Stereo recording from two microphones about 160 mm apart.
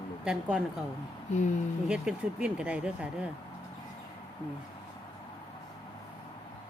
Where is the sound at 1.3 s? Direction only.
50° left (ahead or behind).